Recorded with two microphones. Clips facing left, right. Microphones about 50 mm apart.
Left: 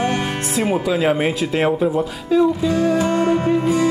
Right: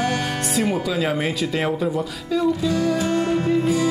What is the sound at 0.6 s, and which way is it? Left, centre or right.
Speech, centre.